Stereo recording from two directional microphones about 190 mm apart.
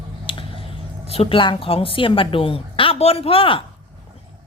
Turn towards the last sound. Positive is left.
turn(degrees=30)  # may be behind; listen again after turning